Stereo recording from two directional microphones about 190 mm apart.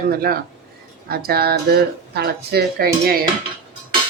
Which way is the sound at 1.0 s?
55° right (ahead or behind).